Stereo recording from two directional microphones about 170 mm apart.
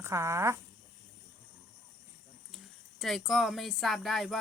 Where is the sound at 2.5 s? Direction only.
Centre (ahead or behind).